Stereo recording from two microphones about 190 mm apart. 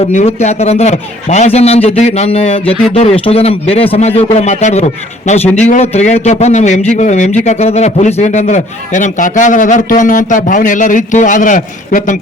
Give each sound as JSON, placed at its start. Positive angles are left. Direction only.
{"t": 0.0, "sound": "a man's voice", "side_deg": 35}